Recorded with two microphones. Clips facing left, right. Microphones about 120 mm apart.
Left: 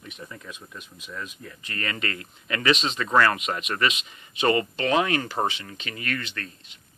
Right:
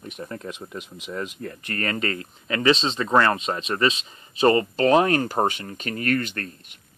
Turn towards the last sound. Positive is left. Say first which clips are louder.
# right 5 dB
turn(degrees=-45)  # may be behind; listen again after turning